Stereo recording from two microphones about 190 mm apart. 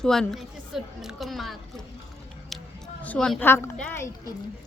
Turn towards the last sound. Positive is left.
turn(degrees=10)  # may be behind; listen again after turning